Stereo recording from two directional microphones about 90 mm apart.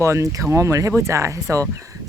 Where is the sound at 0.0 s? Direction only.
35° right (ahead or behind).